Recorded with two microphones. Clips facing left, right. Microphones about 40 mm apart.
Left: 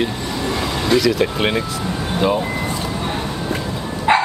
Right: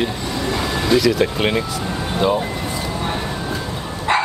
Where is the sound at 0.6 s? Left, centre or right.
Centre.